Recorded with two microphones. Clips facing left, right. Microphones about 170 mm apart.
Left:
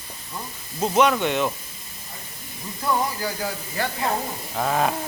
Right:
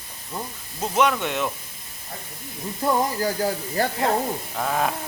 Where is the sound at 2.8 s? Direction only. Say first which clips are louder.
Right 2 dB; 40° right (ahead or behind).